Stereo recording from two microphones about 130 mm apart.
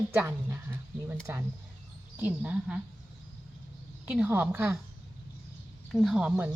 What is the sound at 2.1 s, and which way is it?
Speech, 10° right (ahead or behind).